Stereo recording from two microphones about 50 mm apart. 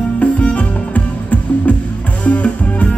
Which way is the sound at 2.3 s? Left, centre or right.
Left.